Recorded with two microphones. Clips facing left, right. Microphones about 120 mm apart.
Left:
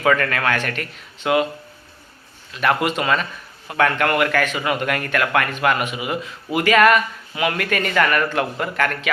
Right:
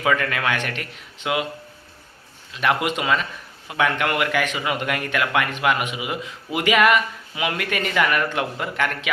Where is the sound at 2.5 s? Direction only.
15° right (ahead or behind).